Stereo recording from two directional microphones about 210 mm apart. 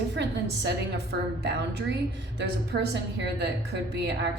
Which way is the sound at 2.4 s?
55° right (ahead or behind).